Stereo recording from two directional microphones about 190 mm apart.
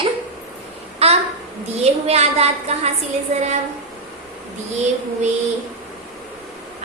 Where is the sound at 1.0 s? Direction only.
30° right (ahead or behind).